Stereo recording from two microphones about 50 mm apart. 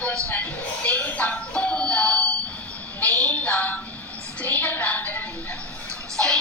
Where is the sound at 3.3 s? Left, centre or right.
Left.